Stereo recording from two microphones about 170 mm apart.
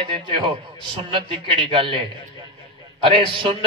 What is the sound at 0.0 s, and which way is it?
Speech, 30° right (ahead or behind).